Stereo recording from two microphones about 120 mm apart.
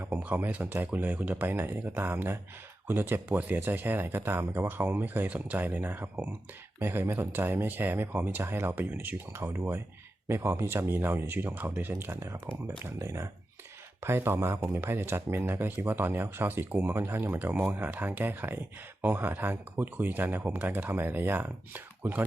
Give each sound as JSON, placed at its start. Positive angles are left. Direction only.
{"t": 0.0, "sound": "speech", "side_deg": -15}